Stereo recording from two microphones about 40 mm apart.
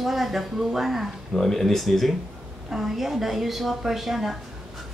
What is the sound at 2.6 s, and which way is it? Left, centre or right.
Speech, centre.